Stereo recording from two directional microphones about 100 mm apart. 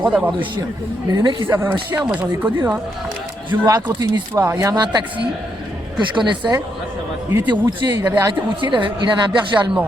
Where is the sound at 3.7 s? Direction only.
40° right (ahead or behind).